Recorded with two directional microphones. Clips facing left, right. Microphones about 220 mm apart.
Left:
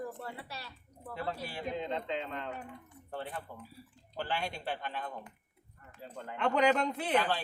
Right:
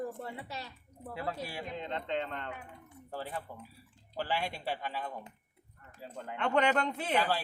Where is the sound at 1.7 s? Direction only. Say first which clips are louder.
Right 1 dB; centre (ahead or behind).